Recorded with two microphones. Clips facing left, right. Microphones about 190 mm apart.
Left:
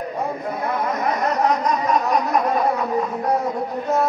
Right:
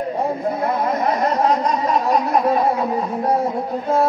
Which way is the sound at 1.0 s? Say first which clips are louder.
Right 1 dB; 30° right (ahead or behind).